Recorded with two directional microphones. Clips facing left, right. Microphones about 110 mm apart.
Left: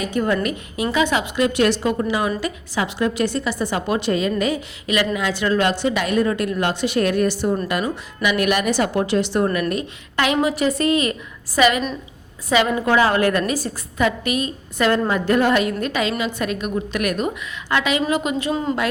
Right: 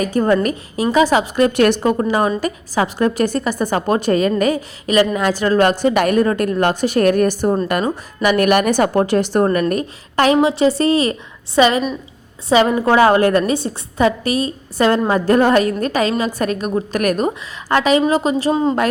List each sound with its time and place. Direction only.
0.0 s a woman's voice: 40° right (ahead or behind)
10.3 s a woman's voice: 25° right (ahead or behind)